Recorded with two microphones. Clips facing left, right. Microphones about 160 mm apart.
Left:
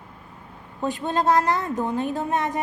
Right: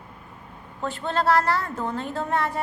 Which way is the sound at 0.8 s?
15° left (ahead or behind).